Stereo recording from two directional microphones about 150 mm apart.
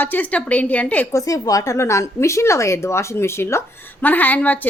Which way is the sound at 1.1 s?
20° left (ahead or behind).